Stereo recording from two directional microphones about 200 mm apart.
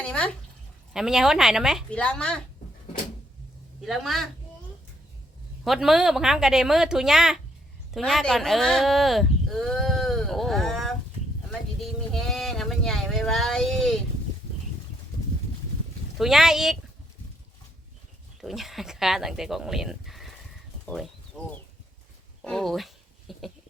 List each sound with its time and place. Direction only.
0.0 s a sound: 5° left (ahead or behind)
0.9 s a woman's voice: centre (ahead or behind)
3.8 s a woman's voice: centre (ahead or behind)
5.6 s a woman's voice: centre (ahead or behind)
11.8 s sheep: centre (ahead or behind)
16.1 s a woman's voice: centre (ahead or behind)
18.3 s speech: centre (ahead or behind)
20.8 s livestock: centre (ahead or behind)
22.4 s speech: centre (ahead or behind)
23.3 s a sound: centre (ahead or behind)